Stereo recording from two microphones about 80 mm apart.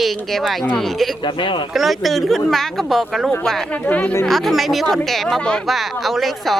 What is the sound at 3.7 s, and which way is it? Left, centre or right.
Speech, centre.